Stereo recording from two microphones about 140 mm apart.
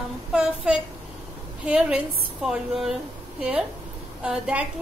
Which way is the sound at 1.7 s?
5° right (ahead or behind).